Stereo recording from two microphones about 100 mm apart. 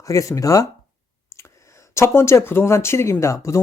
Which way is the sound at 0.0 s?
30° left (ahead or behind).